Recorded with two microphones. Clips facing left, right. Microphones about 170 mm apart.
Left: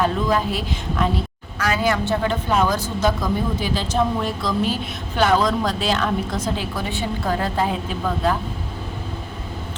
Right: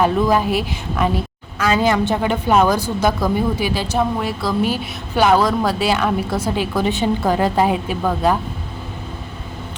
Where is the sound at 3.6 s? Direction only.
10° right (ahead or behind).